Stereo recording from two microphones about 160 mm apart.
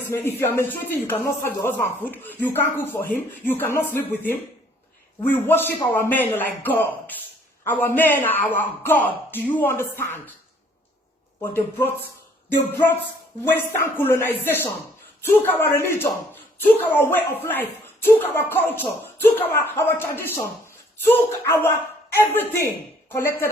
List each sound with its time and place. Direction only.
0.1 s a man's voice: 15° left (ahead or behind)
11.3 s speech: 15° left (ahead or behind)